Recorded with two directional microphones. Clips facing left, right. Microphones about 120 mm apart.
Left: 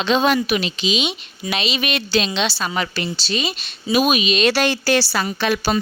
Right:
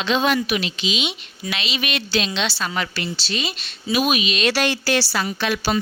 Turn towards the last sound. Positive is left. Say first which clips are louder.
# left 2 dB
turn(degrees=45)  # may be behind; listen again after turning